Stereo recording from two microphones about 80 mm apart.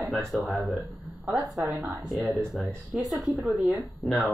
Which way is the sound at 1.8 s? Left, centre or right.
Right.